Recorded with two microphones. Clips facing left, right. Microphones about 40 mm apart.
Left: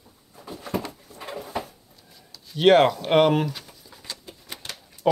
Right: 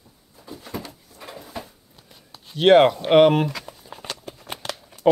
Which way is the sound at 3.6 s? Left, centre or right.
Right.